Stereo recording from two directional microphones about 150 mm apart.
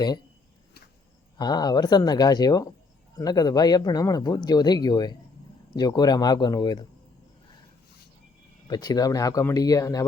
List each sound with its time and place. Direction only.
1.4 s speech: 25° left (ahead or behind)
8.6 s speech: 25° left (ahead or behind)